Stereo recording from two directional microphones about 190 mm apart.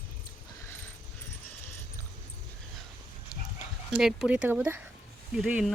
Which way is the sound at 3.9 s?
Centre (ahead or behind).